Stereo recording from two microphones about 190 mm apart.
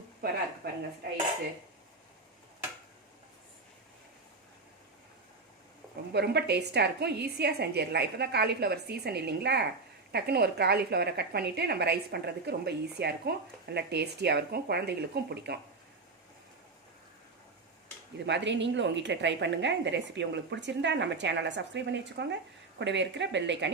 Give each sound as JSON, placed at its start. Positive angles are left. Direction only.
{"t": 0.6, "sound": "a sound", "side_deg": -55}
{"t": 6.1, "sound": "a woman's voice", "side_deg": -60}
{"t": 18.3, "sound": "a woman's voice", "side_deg": -70}